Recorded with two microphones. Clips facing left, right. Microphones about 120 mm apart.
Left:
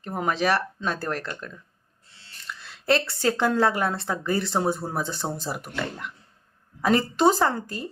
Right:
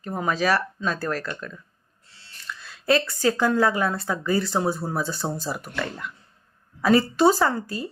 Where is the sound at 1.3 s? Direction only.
40° left (ahead or behind).